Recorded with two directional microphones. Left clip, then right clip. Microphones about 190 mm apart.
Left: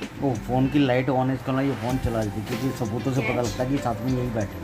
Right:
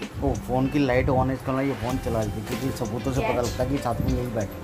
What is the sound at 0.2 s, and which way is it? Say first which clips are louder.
Speech: left 1 dB; centre (ahead or behind).